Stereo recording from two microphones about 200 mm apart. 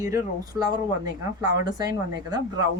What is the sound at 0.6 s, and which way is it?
Speech, 20° right (ahead or behind).